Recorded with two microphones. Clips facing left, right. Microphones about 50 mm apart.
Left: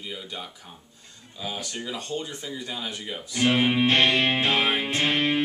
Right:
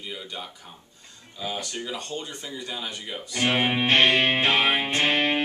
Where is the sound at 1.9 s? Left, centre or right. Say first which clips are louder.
Left 1 dB; centre.